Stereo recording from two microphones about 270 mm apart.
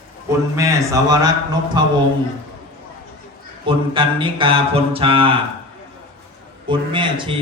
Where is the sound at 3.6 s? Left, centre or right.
Centre.